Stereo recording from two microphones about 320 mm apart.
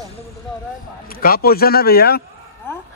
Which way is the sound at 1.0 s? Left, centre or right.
Left.